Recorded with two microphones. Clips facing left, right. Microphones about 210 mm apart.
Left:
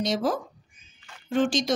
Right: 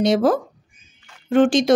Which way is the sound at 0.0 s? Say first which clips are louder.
Right 9 dB; 60° right (ahead or behind).